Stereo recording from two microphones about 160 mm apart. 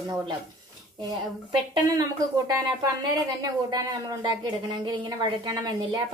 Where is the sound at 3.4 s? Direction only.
25° right (ahead or behind).